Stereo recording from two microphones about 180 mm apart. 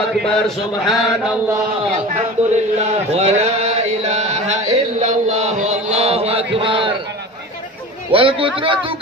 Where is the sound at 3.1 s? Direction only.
35° right (ahead or behind).